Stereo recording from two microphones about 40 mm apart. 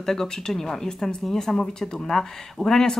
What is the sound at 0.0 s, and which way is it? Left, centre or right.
Speech, centre.